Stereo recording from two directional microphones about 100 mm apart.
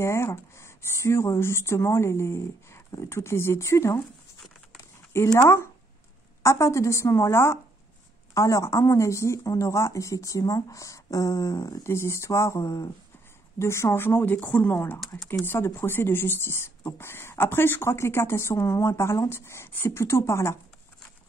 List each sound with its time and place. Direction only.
0.0 s speech: 25° left (ahead or behind)
5.4 s a woman's voice: 25° left (ahead or behind)